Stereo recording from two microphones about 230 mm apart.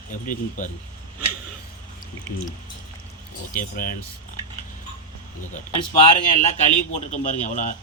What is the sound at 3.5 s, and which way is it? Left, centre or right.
Speech, left.